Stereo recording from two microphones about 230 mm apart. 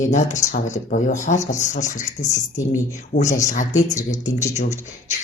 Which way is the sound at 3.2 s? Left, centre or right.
Left.